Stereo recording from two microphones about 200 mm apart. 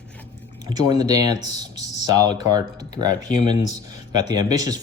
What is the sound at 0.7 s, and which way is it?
Speech, 20° right (ahead or behind).